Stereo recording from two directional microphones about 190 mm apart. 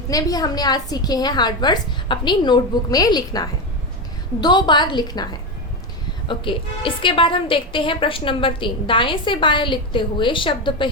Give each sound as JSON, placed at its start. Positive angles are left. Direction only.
{"t": 0.1, "sound": "a woman's voice", "side_deg": 20}